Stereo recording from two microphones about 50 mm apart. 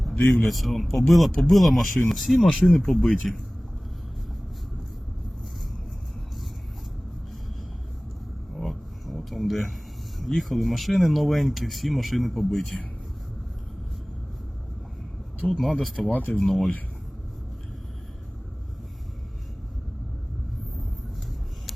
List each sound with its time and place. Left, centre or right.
0.2 s a man's voice: left
0.4 s speech: centre
8.5 s a sound: centre
10.2 s speech: centre
15.4 s speech: centre
16.0 s speech: left